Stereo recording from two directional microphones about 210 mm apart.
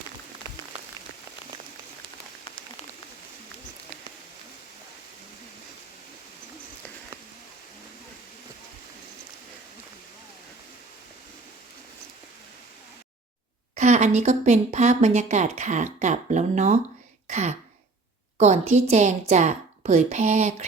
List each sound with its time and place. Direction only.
13.7 s speech: 35° right (ahead or behind)
17.2 s throat clearing: 35° right (ahead or behind)
18.3 s speech: 30° right (ahead or behind)